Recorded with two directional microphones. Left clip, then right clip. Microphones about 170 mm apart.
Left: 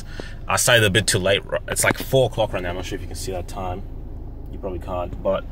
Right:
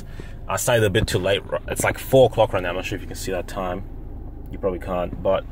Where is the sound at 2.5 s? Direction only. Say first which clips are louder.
Right 3 dB; 35° right (ahead or behind).